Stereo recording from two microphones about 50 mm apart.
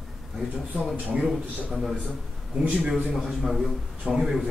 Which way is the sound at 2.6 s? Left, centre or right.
Right.